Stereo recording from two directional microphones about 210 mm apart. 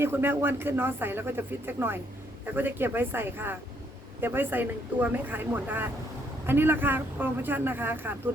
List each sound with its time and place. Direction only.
0.0 s speech: 10° right (ahead or behind)